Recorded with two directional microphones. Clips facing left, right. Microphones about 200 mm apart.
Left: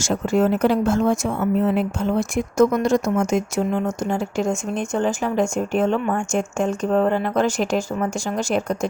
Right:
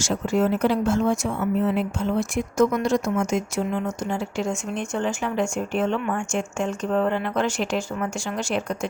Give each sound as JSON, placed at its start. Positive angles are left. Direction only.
{"t": 0.0, "sound": "speech", "side_deg": 50}